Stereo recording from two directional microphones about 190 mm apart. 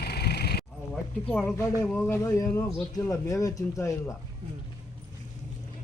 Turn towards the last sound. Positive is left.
turn(degrees=15)  # may be behind; listen again after turning